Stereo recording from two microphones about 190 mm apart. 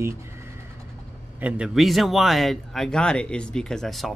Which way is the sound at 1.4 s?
5° right (ahead or behind).